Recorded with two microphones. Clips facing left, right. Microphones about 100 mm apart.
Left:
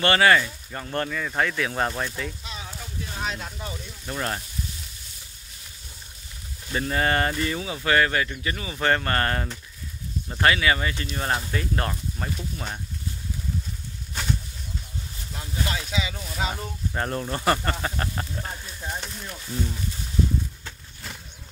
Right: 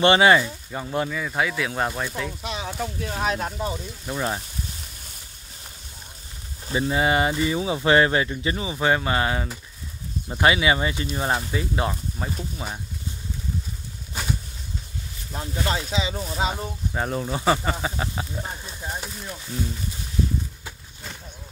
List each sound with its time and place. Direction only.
0.0 s speech: 20° right (ahead or behind)
2.4 s speech: 75° right (ahead or behind)
3.2 s speech: 45° right (ahead or behind)
4.0 s speech: 10° right (ahead or behind)
6.7 s speech: 10° right (ahead or behind)
7.6 s speech: 25° right (ahead or behind); by 9.6 s 5° right (ahead or behind)
10.2 s speech: 15° right (ahead or behind)
14.2 s bird flight: 5° right (ahead or behind)
15.3 s speech: 35° right (ahead or behind)
16.9 s speech: 5° right (ahead or behind)
20.6 s a sound: 5° right (ahead or behind)